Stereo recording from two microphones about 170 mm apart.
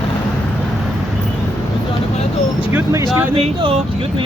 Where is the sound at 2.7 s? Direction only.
15° right (ahead or behind).